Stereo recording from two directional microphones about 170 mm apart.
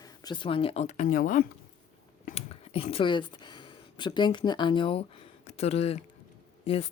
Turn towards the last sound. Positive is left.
turn(degrees=35)  # may be behind; listen again after turning